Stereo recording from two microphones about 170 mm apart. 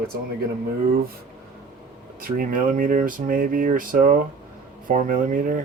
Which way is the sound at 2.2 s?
55° right (ahead or behind).